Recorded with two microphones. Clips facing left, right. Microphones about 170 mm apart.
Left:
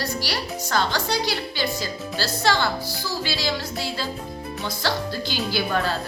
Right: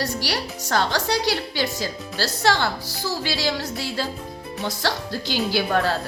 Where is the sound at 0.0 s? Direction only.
75° right (ahead or behind).